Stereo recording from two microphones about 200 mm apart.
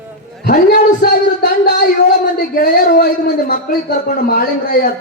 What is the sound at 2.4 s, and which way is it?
A man's voice, 40° left (ahead or behind).